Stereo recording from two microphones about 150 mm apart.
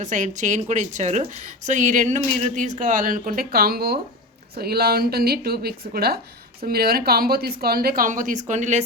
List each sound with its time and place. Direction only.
0.0 s speech: 55° right (ahead or behind)